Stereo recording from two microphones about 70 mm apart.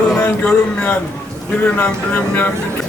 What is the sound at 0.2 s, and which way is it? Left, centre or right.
Speech, left.